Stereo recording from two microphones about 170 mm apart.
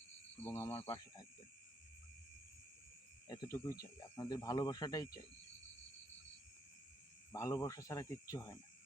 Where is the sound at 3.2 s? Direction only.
20° left (ahead or behind).